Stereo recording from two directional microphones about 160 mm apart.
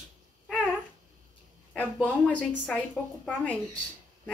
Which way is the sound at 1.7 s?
5° left (ahead or behind).